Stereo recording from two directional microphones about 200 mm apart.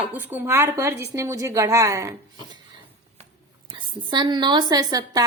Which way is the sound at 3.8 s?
20° right (ahead or behind).